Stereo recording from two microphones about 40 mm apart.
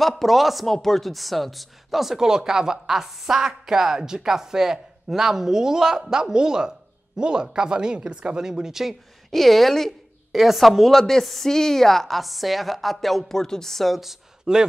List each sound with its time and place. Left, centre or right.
0.0 s a woman's voice: centre
9.3 s a woman's voice: centre
14.4 s speech: centre